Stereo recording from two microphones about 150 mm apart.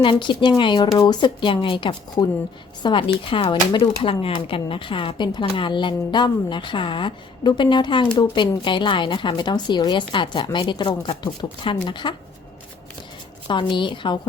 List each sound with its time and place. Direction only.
0.0 s speech: 30° left (ahead or behind)
13.5 s speech: 30° left (ahead or behind)